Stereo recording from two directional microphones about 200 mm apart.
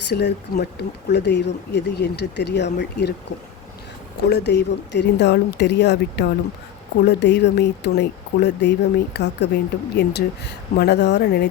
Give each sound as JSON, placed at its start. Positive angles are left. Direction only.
{"t": 0.1, "sound": "speech", "side_deg": 55}
{"t": 4.3, "sound": "speech", "side_deg": 55}